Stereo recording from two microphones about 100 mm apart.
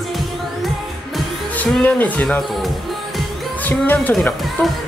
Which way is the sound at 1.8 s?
15° left (ahead or behind).